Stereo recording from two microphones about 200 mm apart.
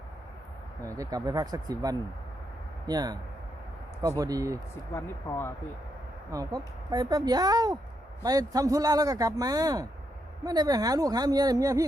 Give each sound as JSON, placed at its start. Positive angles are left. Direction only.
{"t": 0.9, "sound": "speech", "side_deg": -15}
{"t": 4.2, "sound": "speech", "side_deg": -15}
{"t": 4.9, "sound": "speech", "side_deg": 15}
{"t": 6.3, "sound": "speech", "side_deg": -20}